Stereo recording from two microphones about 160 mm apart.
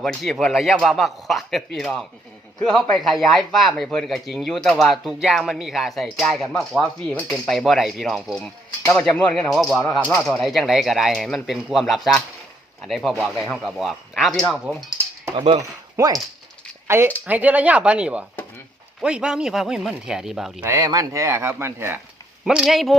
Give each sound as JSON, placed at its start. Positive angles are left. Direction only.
{"t": 0.0, "sound": "speech", "side_deg": 0}
{"t": 15.4, "sound": "speech", "side_deg": -35}
{"t": 16.0, "sound": "speech", "side_deg": -20}
{"t": 20.7, "sound": "speech", "side_deg": -20}
{"t": 22.4, "sound": "speech", "side_deg": 0}